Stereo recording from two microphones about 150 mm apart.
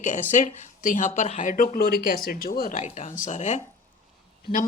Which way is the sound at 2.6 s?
55° left (ahead or behind).